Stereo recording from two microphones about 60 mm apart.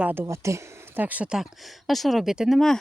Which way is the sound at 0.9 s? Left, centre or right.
Right.